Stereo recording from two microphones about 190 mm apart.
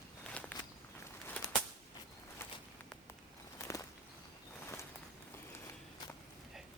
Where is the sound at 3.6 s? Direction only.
15° left (ahead or behind).